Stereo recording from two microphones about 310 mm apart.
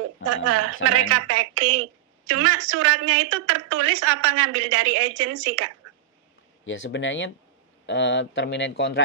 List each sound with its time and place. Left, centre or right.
0.2 s a woman's voice: right
6.6 s speech: left